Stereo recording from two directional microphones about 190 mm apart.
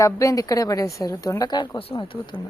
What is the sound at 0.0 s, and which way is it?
A woman's voice, 15° left (ahead or behind).